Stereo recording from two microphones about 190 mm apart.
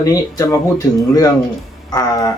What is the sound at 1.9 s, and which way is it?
Music, 20° left (ahead or behind).